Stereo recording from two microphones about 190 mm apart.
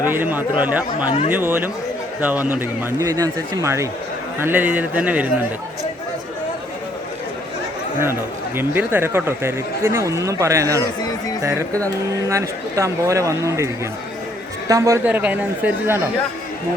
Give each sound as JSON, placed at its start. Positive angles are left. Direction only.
{"t": 0.1, "sound": "speech", "side_deg": -10}
{"t": 8.5, "sound": "speech", "side_deg": -10}
{"t": 14.7, "sound": "speech", "side_deg": -15}